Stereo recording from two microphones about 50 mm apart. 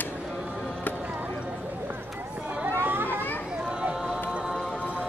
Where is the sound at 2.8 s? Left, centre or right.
Right.